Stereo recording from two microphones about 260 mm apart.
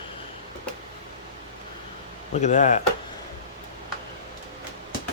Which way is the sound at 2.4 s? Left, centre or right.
Left.